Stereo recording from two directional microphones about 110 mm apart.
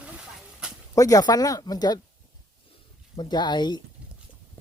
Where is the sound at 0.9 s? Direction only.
30° left (ahead or behind).